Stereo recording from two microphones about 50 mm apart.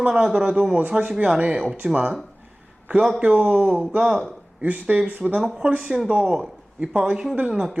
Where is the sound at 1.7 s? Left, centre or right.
Right.